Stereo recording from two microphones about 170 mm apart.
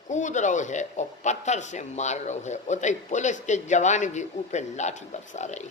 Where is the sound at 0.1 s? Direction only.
45° left (ahead or behind).